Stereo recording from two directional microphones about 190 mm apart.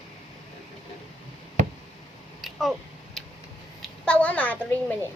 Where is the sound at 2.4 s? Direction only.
Centre (ahead or behind).